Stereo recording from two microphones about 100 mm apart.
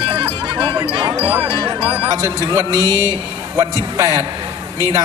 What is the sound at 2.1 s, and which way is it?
Speech, 35° right (ahead or behind).